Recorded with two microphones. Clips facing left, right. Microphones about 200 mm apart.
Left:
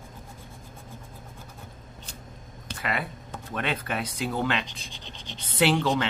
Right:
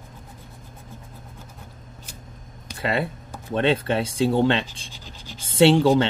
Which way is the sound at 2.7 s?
30° right (ahead or behind).